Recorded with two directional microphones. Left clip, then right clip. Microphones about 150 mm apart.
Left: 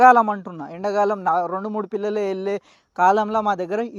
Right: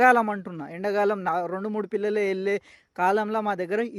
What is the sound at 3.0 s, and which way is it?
Speech, centre (ahead or behind).